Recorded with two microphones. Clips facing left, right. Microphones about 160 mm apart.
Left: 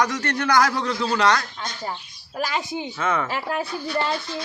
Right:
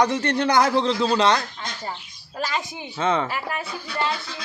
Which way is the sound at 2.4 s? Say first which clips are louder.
Left 2 dB; 15° left (ahead or behind).